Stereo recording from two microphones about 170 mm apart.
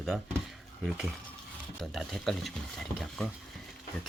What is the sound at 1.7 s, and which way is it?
Speech, centre (ahead or behind).